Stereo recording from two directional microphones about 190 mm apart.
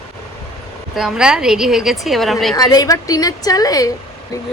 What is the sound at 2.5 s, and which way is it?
Speech, 20° left (ahead or behind).